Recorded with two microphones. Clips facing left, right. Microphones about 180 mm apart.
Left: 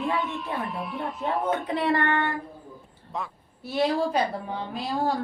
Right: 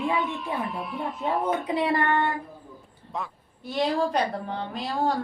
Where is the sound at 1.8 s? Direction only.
15° right (ahead or behind).